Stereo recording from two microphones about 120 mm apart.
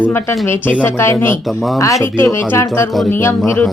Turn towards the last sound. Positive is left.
turn(degrees=20)  # may be behind; listen again after turning